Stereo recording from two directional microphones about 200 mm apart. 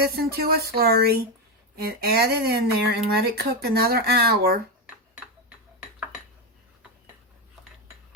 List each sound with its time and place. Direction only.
0.0 s speech: 50° right (ahead or behind)